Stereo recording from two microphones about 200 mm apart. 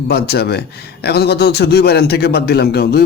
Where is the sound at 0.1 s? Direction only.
50° left (ahead or behind).